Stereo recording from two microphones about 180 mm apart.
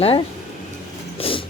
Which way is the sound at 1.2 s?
30° left (ahead or behind).